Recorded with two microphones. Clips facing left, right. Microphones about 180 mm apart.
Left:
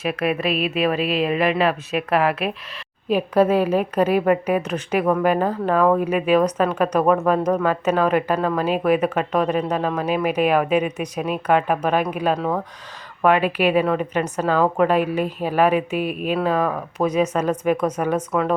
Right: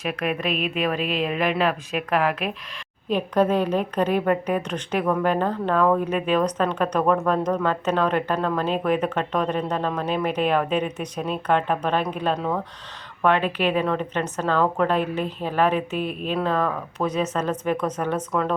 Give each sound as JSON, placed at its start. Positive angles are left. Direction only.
{"t": 0.0, "sound": "speech", "side_deg": 5}